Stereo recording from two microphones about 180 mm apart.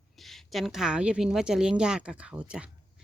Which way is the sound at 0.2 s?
Centre (ahead or behind).